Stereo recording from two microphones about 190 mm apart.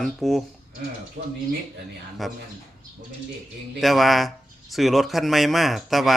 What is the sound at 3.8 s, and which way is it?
Speech, centre (ahead or behind).